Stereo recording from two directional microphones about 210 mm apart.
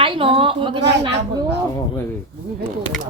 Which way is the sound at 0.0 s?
25° right (ahead or behind).